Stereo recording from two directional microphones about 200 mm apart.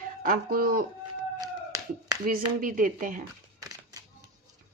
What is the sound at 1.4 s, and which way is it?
Clapping, 20° right (ahead or behind).